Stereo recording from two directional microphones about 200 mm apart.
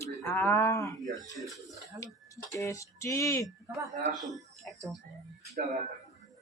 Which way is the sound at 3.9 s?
40° right (ahead or behind).